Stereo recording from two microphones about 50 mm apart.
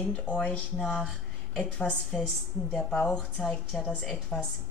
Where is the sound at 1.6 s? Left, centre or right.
Left.